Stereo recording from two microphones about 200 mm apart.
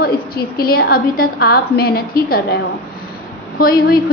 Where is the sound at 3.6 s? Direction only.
45° left (ahead or behind).